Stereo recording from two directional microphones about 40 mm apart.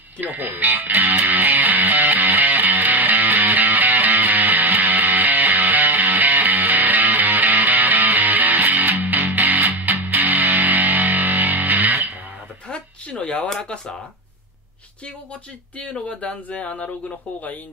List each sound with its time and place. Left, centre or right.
0.2 s music: right
12.6 s a sound: left
13.5 s speech: centre
15.9 s speech: left